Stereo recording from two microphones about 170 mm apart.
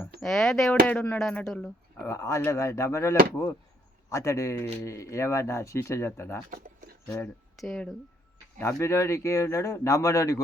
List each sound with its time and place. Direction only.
0.2 s speech: centre (ahead or behind)
2.0 s speech: 15° left (ahead or behind)
6.5 s a sound: 60° right (ahead or behind)
7.6 s speech: centre (ahead or behind)
8.5 s speech: 15° left (ahead or behind)